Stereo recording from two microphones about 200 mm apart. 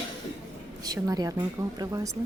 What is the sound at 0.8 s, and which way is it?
Speech, 20° right (ahead or behind).